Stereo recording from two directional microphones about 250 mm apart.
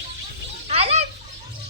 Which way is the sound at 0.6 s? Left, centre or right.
Right.